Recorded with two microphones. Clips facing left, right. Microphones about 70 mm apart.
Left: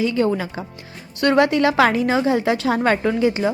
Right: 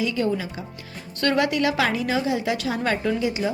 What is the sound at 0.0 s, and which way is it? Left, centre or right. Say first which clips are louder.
A woman's voice: left 4 dB; left.